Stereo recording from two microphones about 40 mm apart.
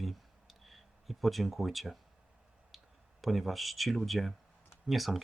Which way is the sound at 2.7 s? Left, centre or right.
Centre.